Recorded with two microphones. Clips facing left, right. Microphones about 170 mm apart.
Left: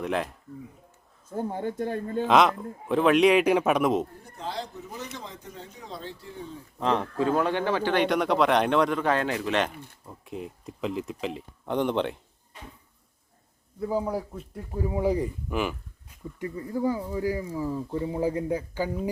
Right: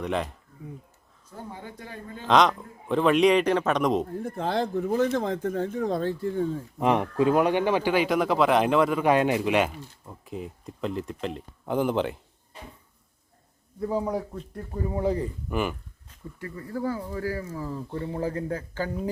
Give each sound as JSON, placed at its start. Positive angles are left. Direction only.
{"t": 0.0, "sound": "speech", "side_deg": 0}
{"t": 1.3, "sound": "speech", "side_deg": 50}
{"t": 2.2, "sound": "speech", "side_deg": 5}
{"t": 4.2, "sound": "speech", "side_deg": -55}
{"t": 6.7, "sound": "a man's voice", "side_deg": -15}
{"t": 13.8, "sound": "speech", "side_deg": 5}
{"t": 15.4, "sound": "speech", "side_deg": 0}
{"t": 16.0, "sound": "speech", "side_deg": 20}